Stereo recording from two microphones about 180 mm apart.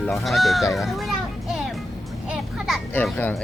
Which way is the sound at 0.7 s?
Centre (ahead or behind).